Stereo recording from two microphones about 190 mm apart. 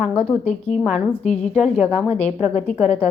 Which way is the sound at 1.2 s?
35° left (ahead or behind).